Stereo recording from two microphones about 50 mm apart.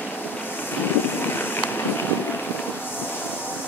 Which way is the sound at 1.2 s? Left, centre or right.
Left.